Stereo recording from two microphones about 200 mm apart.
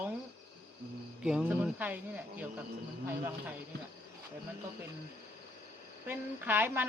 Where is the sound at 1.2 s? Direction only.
5° right (ahead or behind).